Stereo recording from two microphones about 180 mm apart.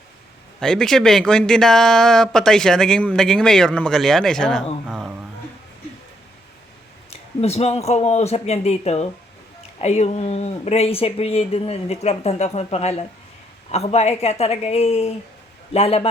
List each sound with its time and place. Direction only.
0.6 s speech: 5° left (ahead or behind)
4.9 s a sound: 5° right (ahead or behind)
7.1 s speech: 35° left (ahead or behind)